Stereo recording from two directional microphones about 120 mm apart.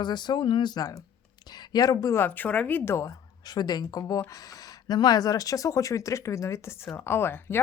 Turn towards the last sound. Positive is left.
turn(degrees=20)  # may be behind; listen again after turning